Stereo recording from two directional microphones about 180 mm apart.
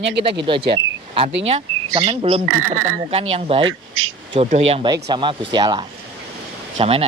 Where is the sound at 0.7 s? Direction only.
30° right (ahead or behind).